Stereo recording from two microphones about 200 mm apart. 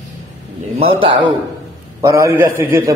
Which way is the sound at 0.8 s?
25° right (ahead or behind).